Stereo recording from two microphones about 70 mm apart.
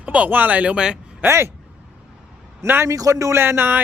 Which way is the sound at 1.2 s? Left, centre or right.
Right.